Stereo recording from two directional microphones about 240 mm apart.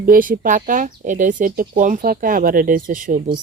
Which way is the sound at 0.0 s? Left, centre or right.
Right.